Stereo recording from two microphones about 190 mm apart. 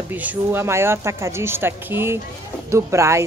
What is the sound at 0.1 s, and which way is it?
Speech, 10° right (ahead or behind).